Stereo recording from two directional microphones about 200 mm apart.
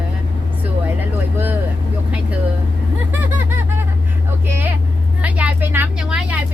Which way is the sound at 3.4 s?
10° right (ahead or behind).